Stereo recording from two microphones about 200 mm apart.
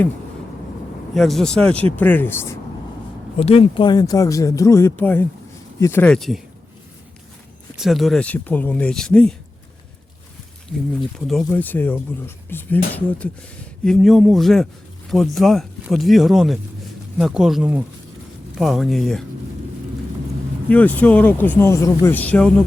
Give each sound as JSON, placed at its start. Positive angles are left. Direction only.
{"t": 1.1, "sound": "speech", "side_deg": 0}
{"t": 3.3, "sound": "speech", "side_deg": 30}
{"t": 7.8, "sound": "speech", "side_deg": 0}
{"t": 11.4, "sound": "speech", "side_deg": 10}
{"t": 20.7, "sound": "speech", "side_deg": 5}